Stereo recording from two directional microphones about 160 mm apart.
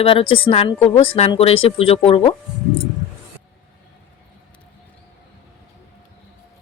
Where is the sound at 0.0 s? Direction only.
35° left (ahead or behind).